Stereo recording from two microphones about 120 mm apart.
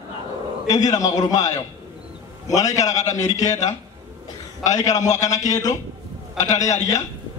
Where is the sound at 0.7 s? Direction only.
30° left (ahead or behind).